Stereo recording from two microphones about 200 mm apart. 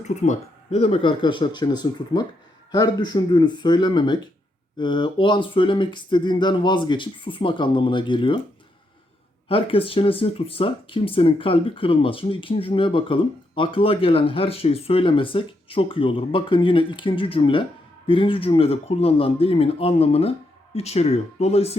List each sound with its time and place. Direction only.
0.0 s speech: 35° left (ahead or behind)
9.5 s speech: 25° left (ahead or behind)